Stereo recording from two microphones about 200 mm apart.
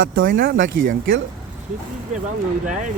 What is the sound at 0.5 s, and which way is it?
Speech, 70° right (ahead or behind).